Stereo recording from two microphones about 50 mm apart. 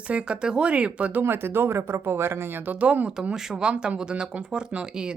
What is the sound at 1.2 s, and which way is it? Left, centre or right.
Speech, right.